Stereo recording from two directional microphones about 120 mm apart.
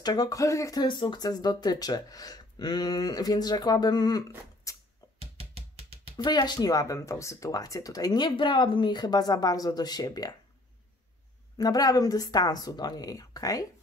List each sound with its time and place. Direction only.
0.0 s speech: 35° left (ahead or behind)
4.7 s a sound: 30° left (ahead or behind)
5.2 s music: 55° right (ahead or behind)
6.1 s speech: 35° left (ahead or behind)
11.5 s speech: 30° left (ahead or behind)